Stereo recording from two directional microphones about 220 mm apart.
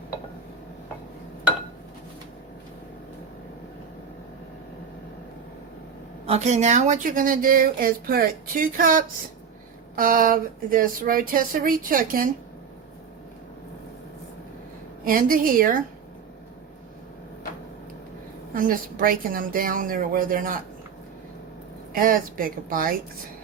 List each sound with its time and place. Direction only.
6.2 s a woman's voice: 30° right (ahead or behind)
15.0 s a woman's voice: 40° right (ahead or behind)
18.5 s a woman's voice: 40° right (ahead or behind)
21.9 s a woman's voice: 40° right (ahead or behind)